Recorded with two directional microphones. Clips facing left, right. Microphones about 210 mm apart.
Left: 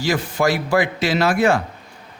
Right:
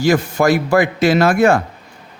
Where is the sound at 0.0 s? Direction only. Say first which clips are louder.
Right 5 dB; 45° right (ahead or behind).